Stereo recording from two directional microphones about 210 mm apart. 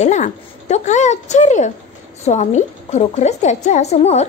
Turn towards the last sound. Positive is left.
turn(degrees=30)  # may be behind; listen again after turning